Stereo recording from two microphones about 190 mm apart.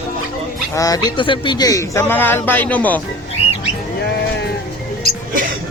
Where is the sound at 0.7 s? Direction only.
20° left (ahead or behind).